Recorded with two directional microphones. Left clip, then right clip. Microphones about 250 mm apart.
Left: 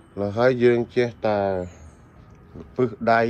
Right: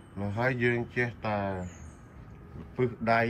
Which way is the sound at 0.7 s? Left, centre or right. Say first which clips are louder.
Left 9 dB; left.